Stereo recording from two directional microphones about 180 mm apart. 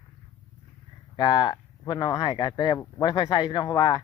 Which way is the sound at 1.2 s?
25° left (ahead or behind).